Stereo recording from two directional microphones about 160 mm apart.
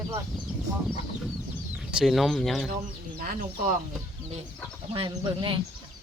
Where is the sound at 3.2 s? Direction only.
60° right (ahead or behind).